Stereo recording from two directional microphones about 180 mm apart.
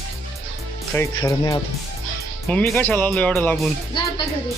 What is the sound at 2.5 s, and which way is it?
Speech, 5° left (ahead or behind).